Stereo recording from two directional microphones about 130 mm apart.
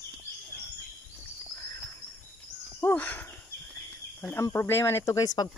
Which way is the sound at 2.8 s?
15° left (ahead or behind).